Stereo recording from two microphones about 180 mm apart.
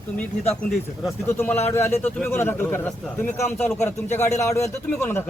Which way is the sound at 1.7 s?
15° left (ahead or behind).